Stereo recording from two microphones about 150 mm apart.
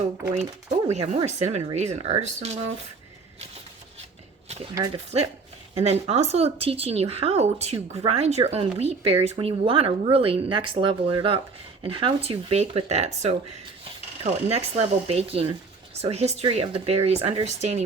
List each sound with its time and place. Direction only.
0.9 s speech: 45° right (ahead or behind)
5.1 s speech: 40° right (ahead or behind)